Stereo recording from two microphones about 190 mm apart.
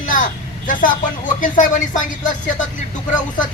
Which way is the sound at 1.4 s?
45° left (ahead or behind).